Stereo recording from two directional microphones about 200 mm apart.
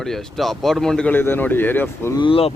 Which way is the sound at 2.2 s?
30° left (ahead or behind).